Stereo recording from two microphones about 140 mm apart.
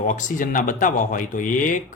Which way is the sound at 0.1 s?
65° left (ahead or behind).